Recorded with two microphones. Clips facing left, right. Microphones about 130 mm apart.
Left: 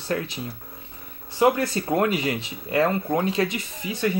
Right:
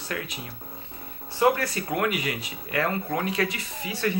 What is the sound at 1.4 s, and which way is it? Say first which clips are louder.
Speech: left 2 dB; 25° left (ahead or behind).